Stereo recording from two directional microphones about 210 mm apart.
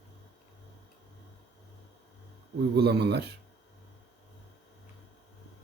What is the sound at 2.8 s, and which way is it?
Speech, 50° right (ahead or behind).